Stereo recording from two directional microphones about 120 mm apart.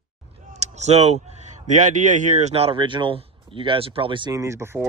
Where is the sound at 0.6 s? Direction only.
70° right (ahead or behind).